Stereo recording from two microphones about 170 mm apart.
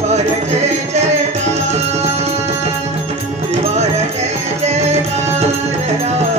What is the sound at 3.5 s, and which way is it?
Music, 40° right (ahead or behind).